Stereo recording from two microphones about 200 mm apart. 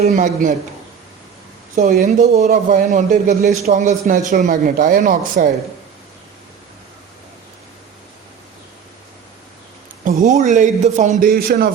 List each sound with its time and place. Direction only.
0.0 s a man's voice: 40° right (ahead or behind)
1.7 s a man's voice: 35° right (ahead or behind)
10.0 s a man's voice: 40° right (ahead or behind)